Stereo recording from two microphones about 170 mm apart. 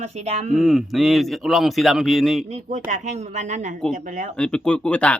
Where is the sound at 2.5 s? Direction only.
40° right (ahead or behind).